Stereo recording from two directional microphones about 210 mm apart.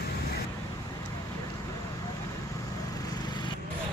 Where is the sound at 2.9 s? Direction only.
20° left (ahead or behind).